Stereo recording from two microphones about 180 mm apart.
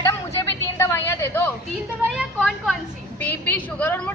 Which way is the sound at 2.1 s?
5° right (ahead or behind).